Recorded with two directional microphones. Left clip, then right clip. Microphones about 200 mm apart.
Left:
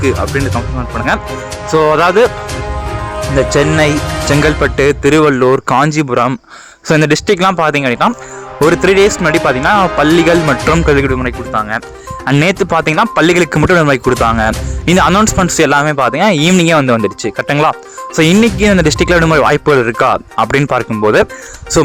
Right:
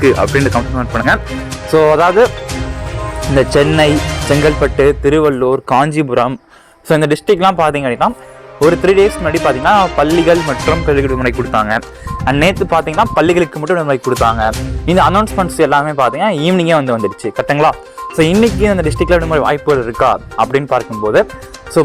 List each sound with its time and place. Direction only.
0.0 s speech: 5° right (ahead or behind)
1.9 s speech: 30° left (ahead or behind)
3.3 s speech: 10° left (ahead or behind)
4.6 s speech: 35° left (ahead or behind)
11.2 s speech: 10° right (ahead or behind)
12.2 s speech: 30° left (ahead or behind)